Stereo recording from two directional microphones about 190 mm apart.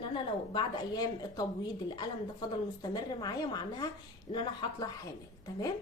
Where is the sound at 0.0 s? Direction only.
25° left (ahead or behind).